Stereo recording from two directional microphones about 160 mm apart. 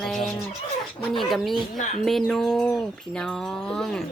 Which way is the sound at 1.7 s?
45° left (ahead or behind).